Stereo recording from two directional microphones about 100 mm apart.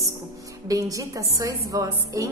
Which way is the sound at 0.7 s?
35° right (ahead or behind).